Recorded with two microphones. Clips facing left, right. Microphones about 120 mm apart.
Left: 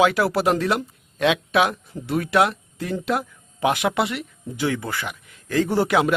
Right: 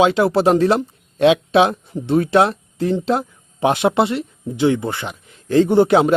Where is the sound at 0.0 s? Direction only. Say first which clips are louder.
Right 4 dB; 25° right (ahead or behind).